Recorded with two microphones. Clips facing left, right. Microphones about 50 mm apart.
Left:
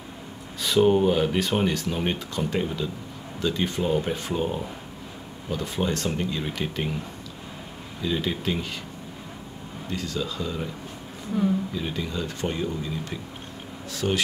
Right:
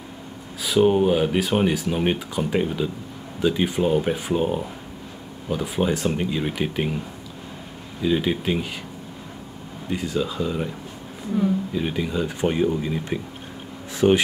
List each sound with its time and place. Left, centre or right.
0.6 s speech: centre
8.0 s speech: centre
9.8 s speech: centre
11.7 s speech: centre